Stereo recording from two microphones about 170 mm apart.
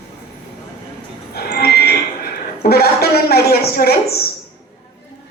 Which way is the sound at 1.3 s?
65° left (ahead or behind).